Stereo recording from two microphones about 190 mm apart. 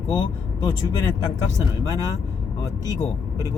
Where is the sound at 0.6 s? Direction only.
20° left (ahead or behind).